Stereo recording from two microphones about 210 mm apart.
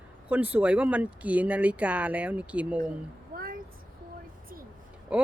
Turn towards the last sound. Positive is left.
turn(degrees=-5)  # may be behind; listen again after turning